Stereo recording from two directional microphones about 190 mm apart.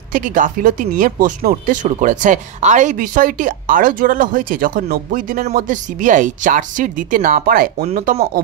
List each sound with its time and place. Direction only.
0.1 s speech: 45° right (ahead or behind)